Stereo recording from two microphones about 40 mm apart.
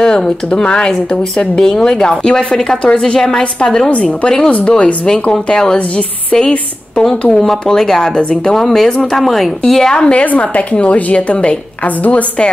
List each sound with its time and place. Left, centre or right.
0.0 s a sound: centre
0.5 s a woman's voice: left
3.9 s a woman's voice: left
5.3 s speech: centre
7.0 s a woman's voice: centre
10.1 s a woman's voice: left